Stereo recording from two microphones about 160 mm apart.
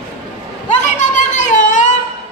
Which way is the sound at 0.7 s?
50° left (ahead or behind).